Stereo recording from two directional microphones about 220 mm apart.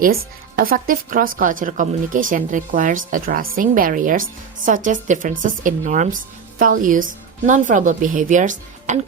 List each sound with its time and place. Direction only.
0.0 s speech: 40° right (ahead or behind)